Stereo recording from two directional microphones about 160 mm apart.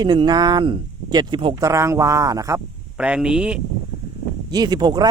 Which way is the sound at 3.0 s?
5° right (ahead or behind).